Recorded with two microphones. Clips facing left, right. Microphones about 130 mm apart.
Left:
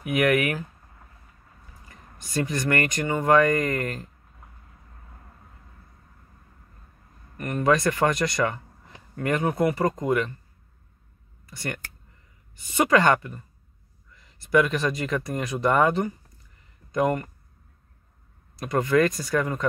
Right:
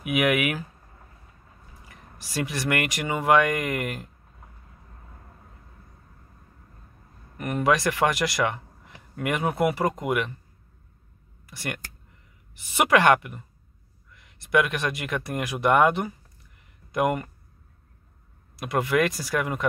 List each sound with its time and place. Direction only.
0.0 s speech: 5° right (ahead or behind)
1.9 s speech: 5° right (ahead or behind)
7.3 s speech: 15° right (ahead or behind)
7.6 s speech: 5° right (ahead or behind)
12.7 s speech: 5° right (ahead or behind)
18.6 s speech: 5° right (ahead or behind)